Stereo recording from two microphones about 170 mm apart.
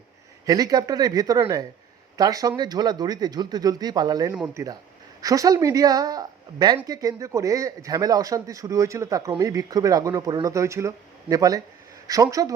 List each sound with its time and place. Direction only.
0.4 s speech: 20° right (ahead or behind)
4.4 s speech: 10° right (ahead or behind)
5.2 s speech: 20° right (ahead or behind)